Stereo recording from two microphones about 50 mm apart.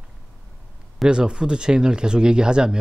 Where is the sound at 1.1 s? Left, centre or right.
Centre.